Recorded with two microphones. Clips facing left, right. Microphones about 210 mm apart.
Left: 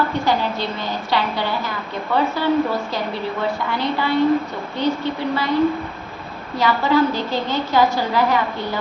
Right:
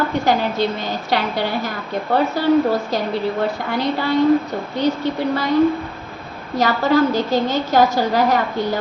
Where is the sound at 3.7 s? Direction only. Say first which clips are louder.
Right 2 dB; 40° right (ahead or behind).